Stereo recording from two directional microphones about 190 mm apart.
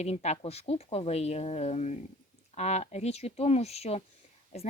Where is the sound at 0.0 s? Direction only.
35° left (ahead or behind).